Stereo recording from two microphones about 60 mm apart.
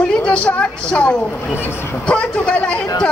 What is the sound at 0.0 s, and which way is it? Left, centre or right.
A woman's voice, centre.